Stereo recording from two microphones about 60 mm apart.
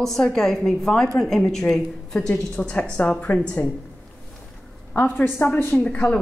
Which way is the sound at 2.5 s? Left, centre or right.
Left.